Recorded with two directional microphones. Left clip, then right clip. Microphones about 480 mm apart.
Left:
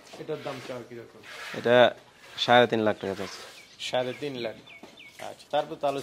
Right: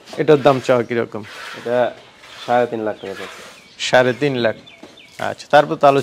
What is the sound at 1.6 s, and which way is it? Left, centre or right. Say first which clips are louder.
Speech: right 1 dB; left.